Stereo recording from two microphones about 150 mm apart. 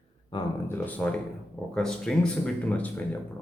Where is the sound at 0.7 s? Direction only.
10° left (ahead or behind).